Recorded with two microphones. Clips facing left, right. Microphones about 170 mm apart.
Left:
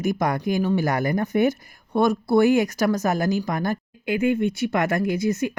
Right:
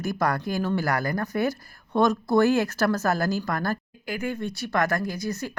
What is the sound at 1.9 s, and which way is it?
Speech, 10° left (ahead or behind).